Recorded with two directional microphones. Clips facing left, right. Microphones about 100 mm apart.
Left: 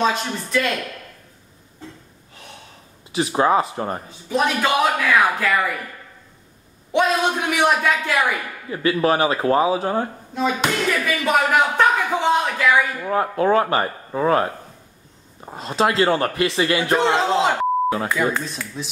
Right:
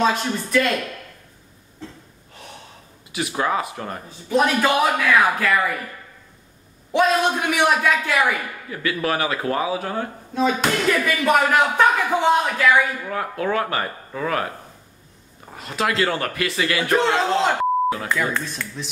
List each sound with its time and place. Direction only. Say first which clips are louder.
0.0 s speech: right 1 dB; centre (ahead or behind)
3.1 s a man's voice: left 5 dB; 30° left (ahead or behind)
4.4 s speech: right 1 dB; centre (ahead or behind)
6.9 s speech: right 1 dB; centre (ahead or behind)
8.6 s a man's voice: left 6 dB; 25° left (ahead or behind)
10.3 s speech: right 1 dB; centre (ahead or behind)
13.0 s a man's voice: left 5 dB; 30° left (ahead or behind)
17.1 s speech: left 1 dB; 5° left (ahead or behind)